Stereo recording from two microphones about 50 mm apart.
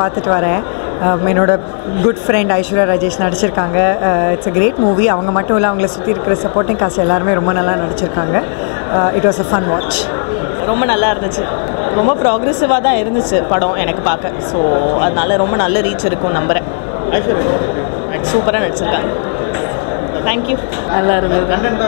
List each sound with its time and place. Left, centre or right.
0.0 s speech: right
8.9 s speech: centre
20.9 s speech: centre